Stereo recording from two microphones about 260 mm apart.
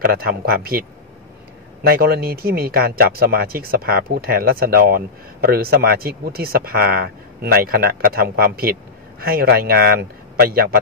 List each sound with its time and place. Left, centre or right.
0.0 s speech: right